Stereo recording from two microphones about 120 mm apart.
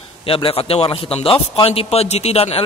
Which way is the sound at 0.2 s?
50° left (ahead or behind).